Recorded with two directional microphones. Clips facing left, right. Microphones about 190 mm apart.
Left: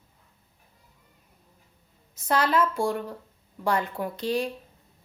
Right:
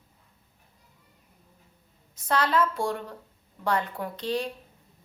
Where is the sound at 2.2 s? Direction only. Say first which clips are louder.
Left 1 dB; 10° left (ahead or behind).